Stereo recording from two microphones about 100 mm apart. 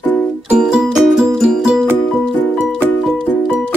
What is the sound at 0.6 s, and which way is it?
Music, 5° right (ahead or behind).